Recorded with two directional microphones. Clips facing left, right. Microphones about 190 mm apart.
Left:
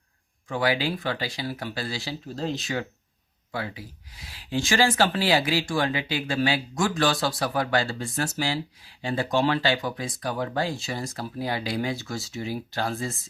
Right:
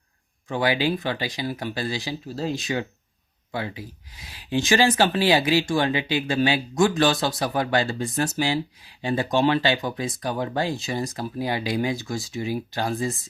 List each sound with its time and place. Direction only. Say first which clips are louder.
0.4 s speech: right 2 dB; 25° right (ahead or behind)
2.2 s speech: right 1 dB; 5° right (ahead or behind)